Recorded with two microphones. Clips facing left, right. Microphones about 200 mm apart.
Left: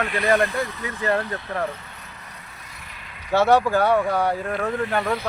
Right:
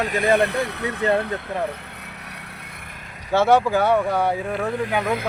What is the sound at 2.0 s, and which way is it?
Vehicle, 70° right (ahead or behind).